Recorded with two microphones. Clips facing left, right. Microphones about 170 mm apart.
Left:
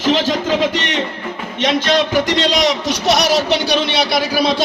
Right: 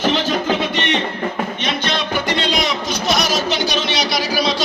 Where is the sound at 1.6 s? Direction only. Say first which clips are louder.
Left 11 dB; 90° left.